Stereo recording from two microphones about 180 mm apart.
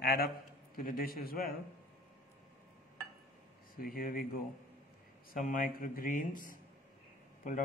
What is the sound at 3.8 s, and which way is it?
Speech, 55° left (ahead or behind).